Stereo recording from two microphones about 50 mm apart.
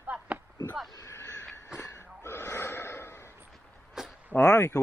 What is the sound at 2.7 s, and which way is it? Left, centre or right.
Gasp, left.